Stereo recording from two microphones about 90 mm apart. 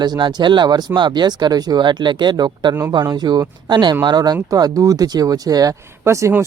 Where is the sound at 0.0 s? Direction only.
55° right (ahead or behind).